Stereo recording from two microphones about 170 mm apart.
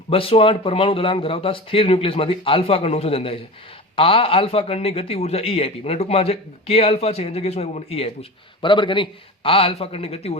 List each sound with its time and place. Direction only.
0.1 s a man's voice: 35° left (ahead or behind)